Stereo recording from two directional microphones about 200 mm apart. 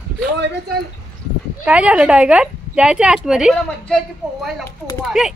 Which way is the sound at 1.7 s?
5° right (ahead or behind).